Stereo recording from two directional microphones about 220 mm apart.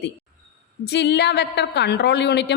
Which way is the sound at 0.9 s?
50° left (ahead or behind).